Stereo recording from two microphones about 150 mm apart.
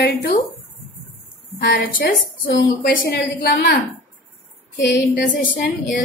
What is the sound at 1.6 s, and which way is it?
A woman's voice, 80° left.